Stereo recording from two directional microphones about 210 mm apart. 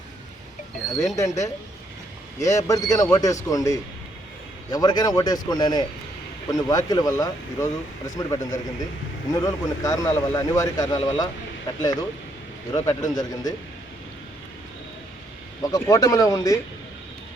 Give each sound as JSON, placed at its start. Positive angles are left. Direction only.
{"t": 0.9, "sound": "a man's voice", "side_deg": 15}
{"t": 15.6, "sound": "speech", "side_deg": 15}